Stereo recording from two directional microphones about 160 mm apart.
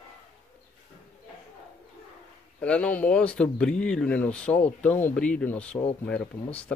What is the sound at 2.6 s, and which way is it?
Speech, 10° left (ahead or behind).